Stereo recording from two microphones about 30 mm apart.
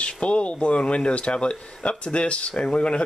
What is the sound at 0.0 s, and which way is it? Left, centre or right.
Speech, left.